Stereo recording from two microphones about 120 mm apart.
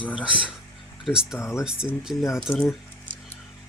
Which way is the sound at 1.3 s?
20° left (ahead or behind).